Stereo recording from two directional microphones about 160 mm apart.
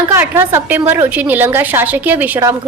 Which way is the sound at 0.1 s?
15° right (ahead or behind).